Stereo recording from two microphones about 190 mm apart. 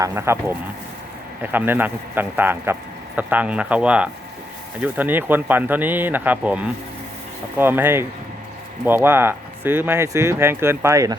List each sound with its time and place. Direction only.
0.0 s speech: 15° right (ahead or behind)
7.6 s speech: 10° right (ahead or behind)